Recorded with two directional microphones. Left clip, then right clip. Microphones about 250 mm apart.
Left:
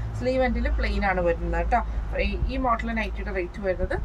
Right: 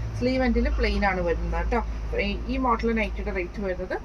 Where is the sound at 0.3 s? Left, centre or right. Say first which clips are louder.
Left 2 dB; centre.